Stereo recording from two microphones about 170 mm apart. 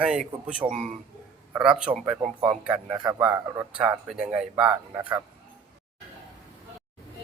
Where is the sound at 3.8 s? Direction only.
5° right (ahead or behind).